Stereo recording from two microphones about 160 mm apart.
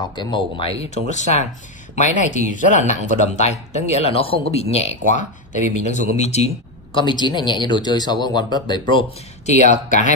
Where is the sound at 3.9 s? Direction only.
40° left (ahead or behind).